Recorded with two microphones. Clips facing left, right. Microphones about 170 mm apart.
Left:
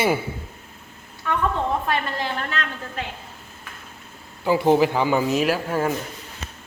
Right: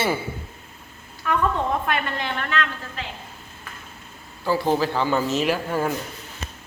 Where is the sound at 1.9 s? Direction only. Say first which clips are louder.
Left 1 dB; 35° left (ahead or behind).